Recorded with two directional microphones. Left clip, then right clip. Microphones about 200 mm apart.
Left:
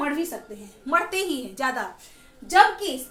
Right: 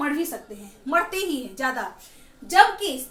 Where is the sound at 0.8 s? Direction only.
25° left (ahead or behind).